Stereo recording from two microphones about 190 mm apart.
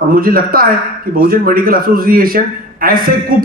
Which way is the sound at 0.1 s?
50° right (ahead or behind).